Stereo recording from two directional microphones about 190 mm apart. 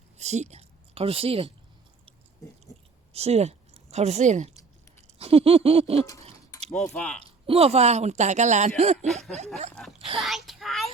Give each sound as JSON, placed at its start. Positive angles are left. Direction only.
{"t": 0.2, "sound": "a woman's voice", "side_deg": -35}
{"t": 3.1, "sound": "speech", "side_deg": -35}
{"t": 5.0, "sound": "a sound", "side_deg": -30}
{"t": 6.9, "sound": "speech", "side_deg": 5}
{"t": 7.4, "sound": "speech", "side_deg": -30}
{"t": 10.2, "sound": "child singing", "side_deg": 0}